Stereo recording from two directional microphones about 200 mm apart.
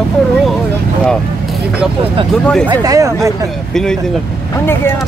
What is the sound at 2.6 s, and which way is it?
Speech, 15° right (ahead or behind).